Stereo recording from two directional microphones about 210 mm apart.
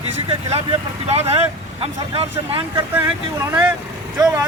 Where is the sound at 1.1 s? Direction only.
30° right (ahead or behind).